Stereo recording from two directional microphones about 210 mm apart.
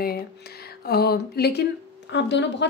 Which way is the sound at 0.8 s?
50° left (ahead or behind).